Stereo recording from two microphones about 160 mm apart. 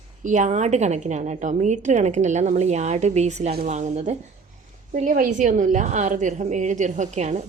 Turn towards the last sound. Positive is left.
turn(degrees=-45)  # may be behind; listen again after turning